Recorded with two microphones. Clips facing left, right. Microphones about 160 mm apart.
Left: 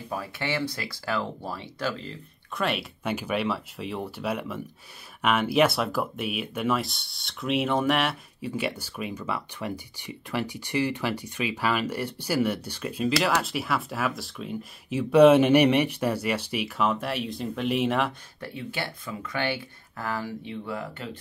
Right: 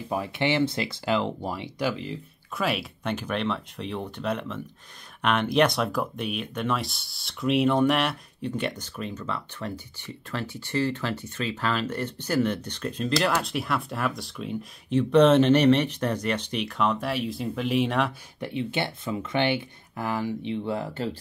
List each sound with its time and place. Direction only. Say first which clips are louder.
0.1 s speech: right 5 dB; 20° right (ahead or behind)
2.5 s speech: right 1 dB; centre (ahead or behind)
18.4 s speech: right 5 dB; 20° right (ahead or behind)